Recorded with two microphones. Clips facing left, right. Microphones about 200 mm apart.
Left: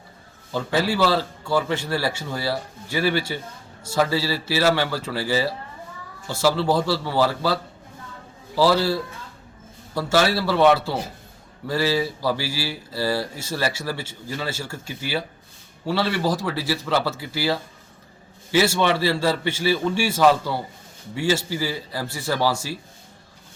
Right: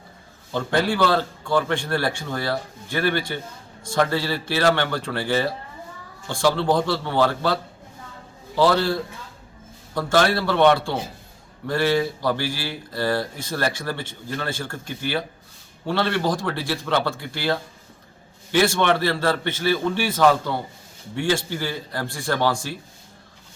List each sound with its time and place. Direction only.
0.5 s a man's voice: 5° left (ahead or behind)